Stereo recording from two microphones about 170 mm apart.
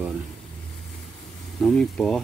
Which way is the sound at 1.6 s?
5° left (ahead or behind).